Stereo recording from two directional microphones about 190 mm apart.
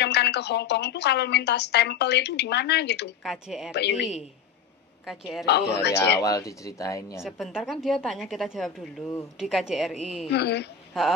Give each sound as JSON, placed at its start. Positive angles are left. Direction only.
{"t": 0.0, "sound": "a woman's voice", "side_deg": 60}
{"t": 3.3, "sound": "a woman's voice", "side_deg": 0}
{"t": 5.0, "sound": "a woman's voice", "side_deg": 0}
{"t": 5.4, "sound": "a woman's voice", "side_deg": 60}
{"t": 6.2, "sound": "speech", "side_deg": 15}
{"t": 7.2, "sound": "a woman's voice", "side_deg": 0}
{"t": 10.3, "sound": "a woman's voice", "side_deg": 60}